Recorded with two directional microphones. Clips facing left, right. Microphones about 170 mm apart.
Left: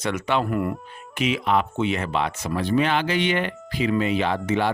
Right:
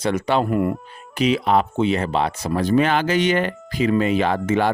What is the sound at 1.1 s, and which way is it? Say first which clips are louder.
Speech: right 4 dB; 35° right (ahead or behind).